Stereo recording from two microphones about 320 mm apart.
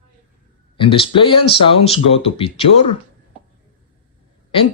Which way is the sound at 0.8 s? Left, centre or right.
Centre.